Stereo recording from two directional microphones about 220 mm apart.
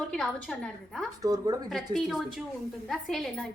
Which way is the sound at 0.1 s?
5° left (ahead or behind).